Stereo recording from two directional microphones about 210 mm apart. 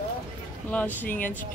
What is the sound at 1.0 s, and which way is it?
Speech, 40° left (ahead or behind).